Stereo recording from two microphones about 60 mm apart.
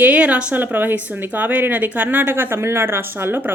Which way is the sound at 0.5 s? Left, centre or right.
Right.